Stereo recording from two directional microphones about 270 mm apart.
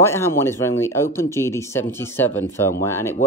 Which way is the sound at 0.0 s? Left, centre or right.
Centre.